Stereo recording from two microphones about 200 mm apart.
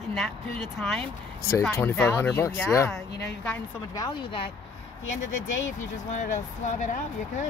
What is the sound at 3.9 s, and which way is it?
Speech, 20° left (ahead or behind).